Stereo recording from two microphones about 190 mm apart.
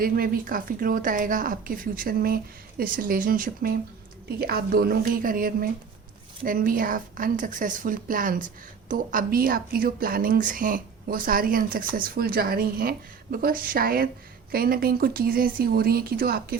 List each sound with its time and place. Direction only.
0.0 s a woman's voice: 50° right (ahead or behind)